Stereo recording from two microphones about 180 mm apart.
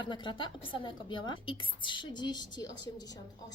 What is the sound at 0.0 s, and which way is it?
A woman's voice, 25° left (ahead or behind).